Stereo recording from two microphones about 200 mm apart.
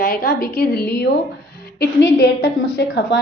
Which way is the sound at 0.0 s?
50° left (ahead or behind).